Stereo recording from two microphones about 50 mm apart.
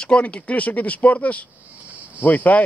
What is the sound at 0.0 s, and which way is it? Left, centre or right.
Speech, left.